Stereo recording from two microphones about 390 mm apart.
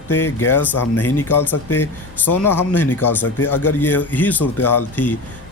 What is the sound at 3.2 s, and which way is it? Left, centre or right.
Speech, left.